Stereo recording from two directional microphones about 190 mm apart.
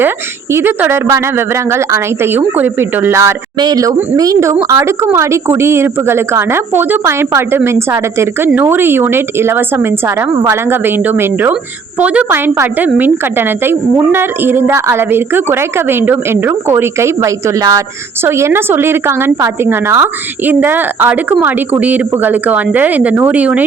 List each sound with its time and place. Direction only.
0.5 s a woman's voice: 10° right (ahead or behind)